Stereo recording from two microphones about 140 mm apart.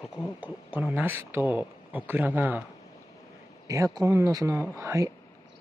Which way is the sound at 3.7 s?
25° right (ahead or behind).